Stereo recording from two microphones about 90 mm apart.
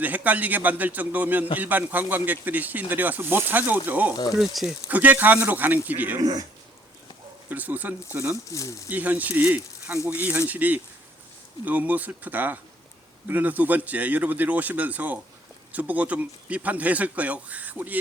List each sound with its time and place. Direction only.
0.0 s speech: 20° right (ahead or behind)
4.1 s speech: 50° left (ahead or behind)
4.4 s speech: 5° right (ahead or behind)
4.9 s speech: 20° right (ahead or behind)
6.1 s speech: 45° right (ahead or behind)
7.5 s speech: 20° right (ahead or behind)
8.4 s speech: 35° left (ahead or behind)
8.9 s speech: 20° right (ahead or behind)